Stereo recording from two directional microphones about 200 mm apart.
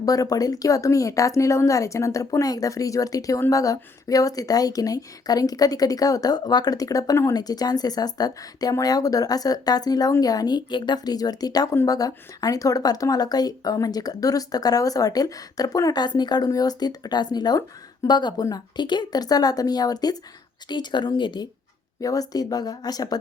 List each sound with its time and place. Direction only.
0.0 s a woman's voice: 15° left (ahead or behind)